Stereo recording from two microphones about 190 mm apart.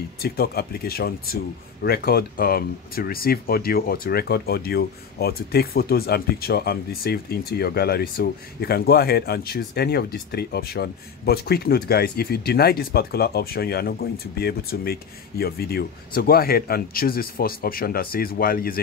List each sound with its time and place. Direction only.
0.2 s speech: 55° left (ahead or behind)